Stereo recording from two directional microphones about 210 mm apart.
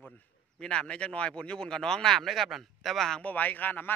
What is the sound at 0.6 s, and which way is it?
Speech, 5° left (ahead or behind).